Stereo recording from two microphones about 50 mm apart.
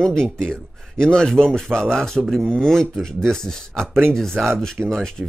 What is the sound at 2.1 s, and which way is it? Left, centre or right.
Speech, centre.